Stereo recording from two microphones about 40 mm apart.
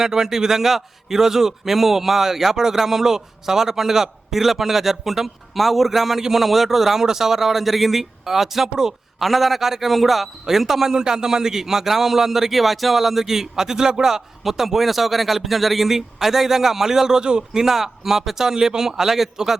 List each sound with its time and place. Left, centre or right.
0.0 s a man's voice: centre
9.2 s a man's voice: centre
10.9 s a man's voice: centre
17.6 s a man's voice: centre